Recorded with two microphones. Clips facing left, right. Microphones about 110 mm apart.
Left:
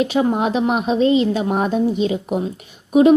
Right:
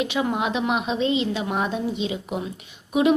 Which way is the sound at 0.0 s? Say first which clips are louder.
Left 6 dB; 40° left (ahead or behind).